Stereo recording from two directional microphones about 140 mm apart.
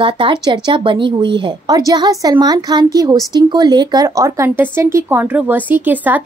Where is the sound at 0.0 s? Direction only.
35° right (ahead or behind).